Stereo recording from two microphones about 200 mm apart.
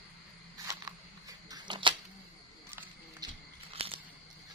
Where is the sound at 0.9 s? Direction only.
20° right (ahead or behind).